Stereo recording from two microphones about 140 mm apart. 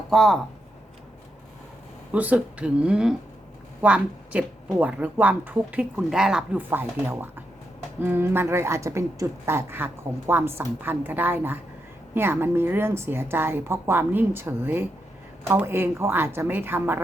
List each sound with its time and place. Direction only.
0.1 s speech: 5° left (ahead or behind)
2.1 s speech: 10° right (ahead or behind)